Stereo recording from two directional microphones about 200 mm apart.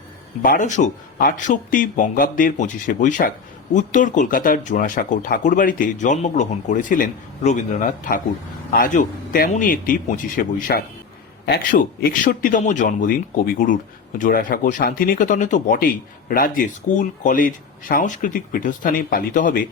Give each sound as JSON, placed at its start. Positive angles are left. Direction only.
{"t": 0.4, "sound": "a man's voice", "side_deg": 40}